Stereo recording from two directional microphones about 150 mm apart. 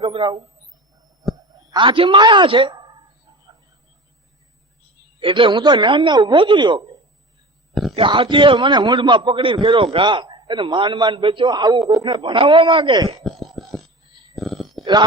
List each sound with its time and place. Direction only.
0.0 s speech: 35° right (ahead or behind)
1.7 s a man's voice: 35° right (ahead or behind)
5.2 s a man's voice: 35° right (ahead or behind)
7.9 s a man's voice: 35° right (ahead or behind)
13.1 s burping: centre (ahead or behind)
14.3 s a sound: centre (ahead or behind)